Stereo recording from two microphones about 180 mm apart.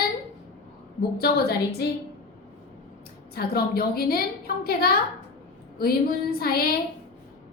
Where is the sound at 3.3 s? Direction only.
60° left (ahead or behind).